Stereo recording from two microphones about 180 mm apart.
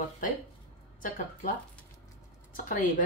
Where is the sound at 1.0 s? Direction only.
50° left (ahead or behind).